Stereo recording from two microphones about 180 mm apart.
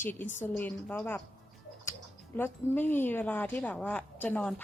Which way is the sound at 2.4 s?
10° left (ahead or behind).